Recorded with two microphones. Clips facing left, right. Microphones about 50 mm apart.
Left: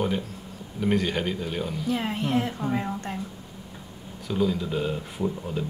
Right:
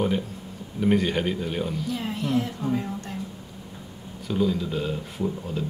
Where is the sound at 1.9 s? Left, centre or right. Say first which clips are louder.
Left 1 dB; left.